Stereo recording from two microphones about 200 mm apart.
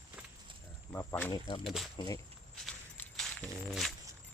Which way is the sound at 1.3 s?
20° left (ahead or behind).